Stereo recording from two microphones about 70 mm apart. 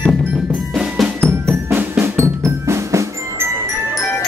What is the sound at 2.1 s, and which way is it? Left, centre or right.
Drum, right.